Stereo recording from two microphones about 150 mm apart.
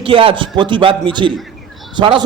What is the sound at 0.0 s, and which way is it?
A man's voice, 35° right (ahead or behind).